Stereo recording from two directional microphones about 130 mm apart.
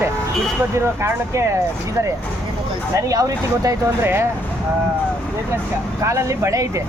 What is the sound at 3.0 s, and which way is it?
Speech, 25° right (ahead or behind).